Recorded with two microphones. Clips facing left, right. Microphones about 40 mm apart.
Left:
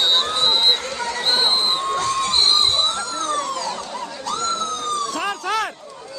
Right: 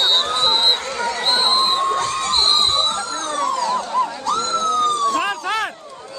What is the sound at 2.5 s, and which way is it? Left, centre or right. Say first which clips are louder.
Police car: right 1 dB; right.